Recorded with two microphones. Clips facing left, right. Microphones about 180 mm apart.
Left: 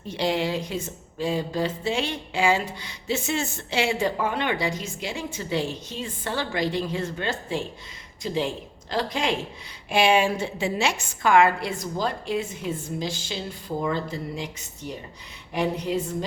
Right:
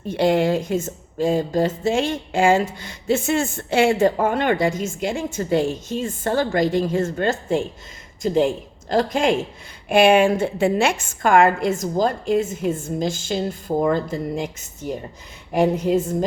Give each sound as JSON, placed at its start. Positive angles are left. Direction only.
{"t": 0.1, "sound": "speech", "side_deg": -50}